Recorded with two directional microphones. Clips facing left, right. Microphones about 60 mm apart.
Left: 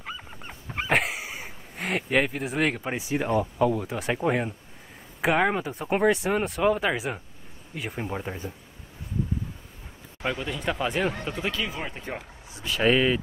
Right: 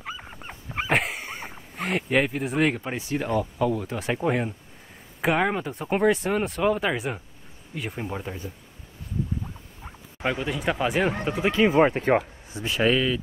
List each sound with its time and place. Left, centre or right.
0.2 s dog: centre
2.9 s speech: centre
10.2 s speech: centre
11.2 s speech: right
11.8 s speech: right
12.9 s speech: left